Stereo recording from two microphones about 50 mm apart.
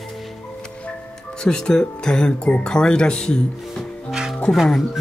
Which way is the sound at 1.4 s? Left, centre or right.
Centre.